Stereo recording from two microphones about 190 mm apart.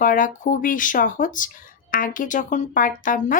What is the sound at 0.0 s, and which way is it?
Speech, 45° left (ahead or behind).